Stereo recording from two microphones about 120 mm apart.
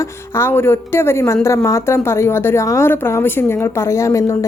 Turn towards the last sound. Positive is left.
turn(degrees=30)  # may be behind; listen again after turning